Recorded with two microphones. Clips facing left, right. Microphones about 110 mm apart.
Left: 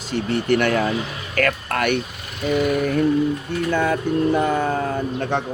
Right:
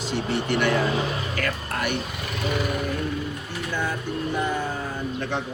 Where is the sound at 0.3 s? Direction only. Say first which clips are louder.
Left 5 dB; 50° left (ahead or behind).